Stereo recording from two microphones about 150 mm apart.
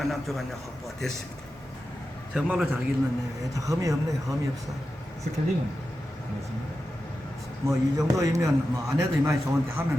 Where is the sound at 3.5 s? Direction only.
20° right (ahead or behind).